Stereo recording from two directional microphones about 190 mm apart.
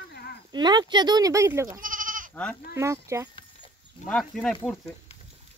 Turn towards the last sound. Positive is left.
turn(degrees=5)  # may be behind; listen again after turning